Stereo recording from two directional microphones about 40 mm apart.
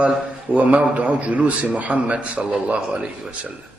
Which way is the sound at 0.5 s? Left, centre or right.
Right.